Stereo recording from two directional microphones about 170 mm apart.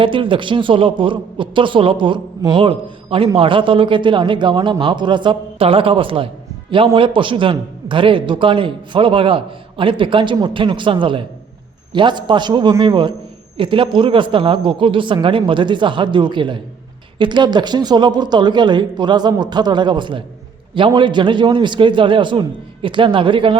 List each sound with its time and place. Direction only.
0.0 s a man's voice: 30° right (ahead or behind)